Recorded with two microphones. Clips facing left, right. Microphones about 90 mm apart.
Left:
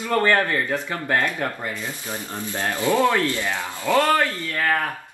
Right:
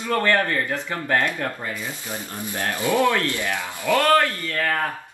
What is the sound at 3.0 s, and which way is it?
Speech, 20° left (ahead or behind).